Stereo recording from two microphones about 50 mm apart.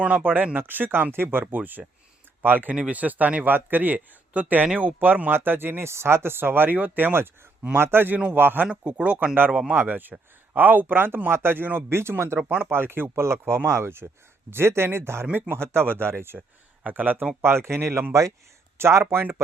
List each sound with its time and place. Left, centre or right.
0.2 s speech: right
2.7 s speech: right
8.6 s speech: right
9.7 s speech: right
11.9 s speech: right
15.3 s speech: right
16.9 s speech: right
17.4 s speech: right
18.1 s speech: right
18.8 s speech: right
19.1 s speech: right